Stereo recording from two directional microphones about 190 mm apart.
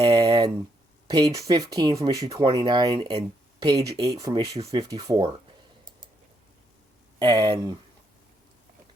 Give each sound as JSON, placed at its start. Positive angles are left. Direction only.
{"t": 0.0, "sound": "a sound", "side_deg": -20}
{"t": 1.1, "sound": "speech", "side_deg": -20}
{"t": 7.2, "sound": "speech", "side_deg": -25}